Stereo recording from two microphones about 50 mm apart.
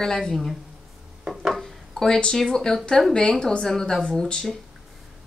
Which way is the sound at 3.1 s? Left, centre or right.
Centre.